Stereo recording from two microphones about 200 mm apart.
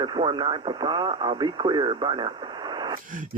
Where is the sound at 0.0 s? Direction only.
20° right (ahead or behind).